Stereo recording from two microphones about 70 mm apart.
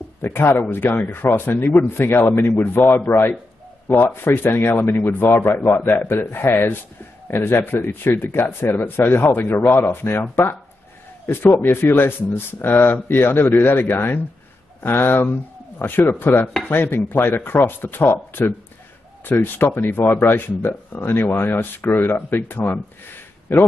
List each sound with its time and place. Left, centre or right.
0.2 s speech: left
10.3 s chopping: left
11.3 s speech: left
15.8 s chopping: left
17.2 s speech: left